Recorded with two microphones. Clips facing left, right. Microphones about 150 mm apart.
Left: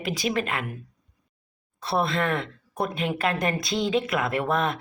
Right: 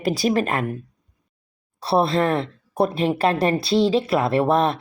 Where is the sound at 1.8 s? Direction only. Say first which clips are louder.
Right 6 dB; 35° right (ahead or behind).